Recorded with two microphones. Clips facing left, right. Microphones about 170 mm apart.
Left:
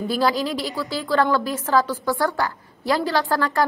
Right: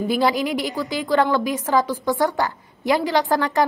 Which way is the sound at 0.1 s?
20° right (ahead or behind).